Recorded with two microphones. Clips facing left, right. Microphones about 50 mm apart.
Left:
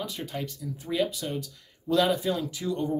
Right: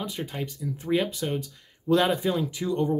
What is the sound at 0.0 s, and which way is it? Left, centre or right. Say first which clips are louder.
Speech: right 1 dB; right.